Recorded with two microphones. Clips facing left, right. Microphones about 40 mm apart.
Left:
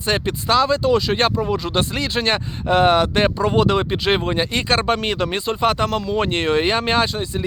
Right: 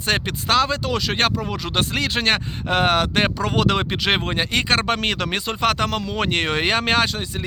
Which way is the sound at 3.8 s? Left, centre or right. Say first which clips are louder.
Left 2 dB; right.